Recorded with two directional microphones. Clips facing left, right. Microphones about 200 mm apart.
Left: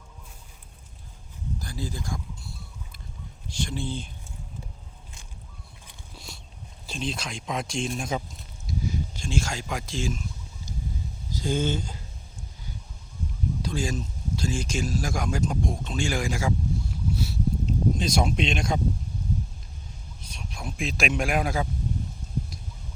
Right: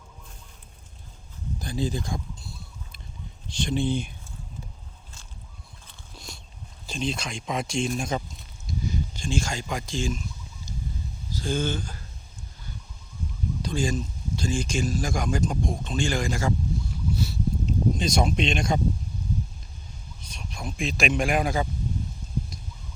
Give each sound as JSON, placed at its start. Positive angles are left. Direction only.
{"t": 1.5, "sound": "speech", "side_deg": -20}
{"t": 3.5, "sound": "speech", "side_deg": -20}
{"t": 5.9, "sound": "a sound", "side_deg": 5}
{"t": 6.8, "sound": "speech", "side_deg": 0}
{"t": 11.3, "sound": "speech", "side_deg": 20}
{"t": 13.6, "sound": "speech", "side_deg": 5}
{"t": 17.2, "sound": "a sound", "side_deg": 5}
{"t": 20.3, "sound": "a man's voice", "side_deg": 0}